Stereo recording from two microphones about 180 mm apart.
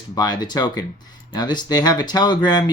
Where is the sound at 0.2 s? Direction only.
25° left (ahead or behind).